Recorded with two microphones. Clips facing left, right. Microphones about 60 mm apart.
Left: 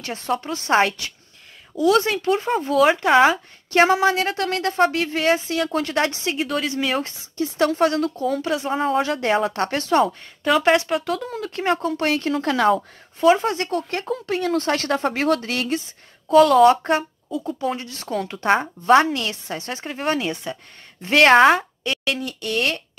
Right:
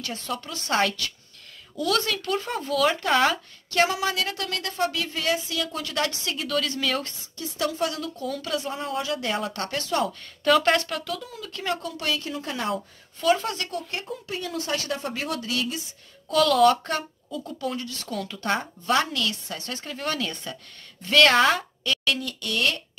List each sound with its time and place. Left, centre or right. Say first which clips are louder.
0.0 s speech: left 7 dB; left
3.8 s speech: left 7 dB; left
10.4 s speech: left 3 dB; centre
11.1 s speech: left 8 dB; left
12.3 s speech: left 11 dB; left
13.2 s speech: left 6 dB; left
14.0 s speech: left 9 dB; left
16.3 s speech: left 6 dB; left